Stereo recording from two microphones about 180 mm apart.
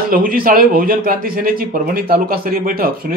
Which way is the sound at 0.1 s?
50° right (ahead or behind).